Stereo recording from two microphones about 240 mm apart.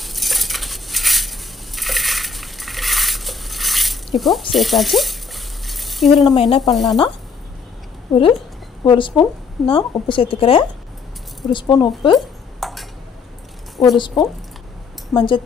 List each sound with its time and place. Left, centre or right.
0.0 s dishes: centre
1.8 s a sound: centre
6.4 s speech: centre
8.1 s speech: centre
8.8 s a woman's voice: centre
12.2 s dishes: centre
13.9 s a woman's voice: centre